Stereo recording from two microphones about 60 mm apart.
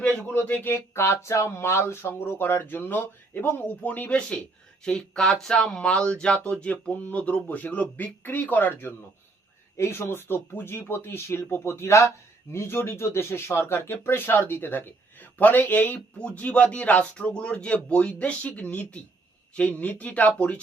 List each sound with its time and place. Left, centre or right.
0.0 s speech: left
0.9 s speech: left
9.7 s speech: left
17.0 s speech: centre